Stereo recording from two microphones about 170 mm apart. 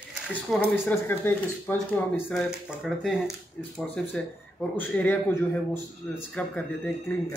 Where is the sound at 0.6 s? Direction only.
10° left (ahead or behind).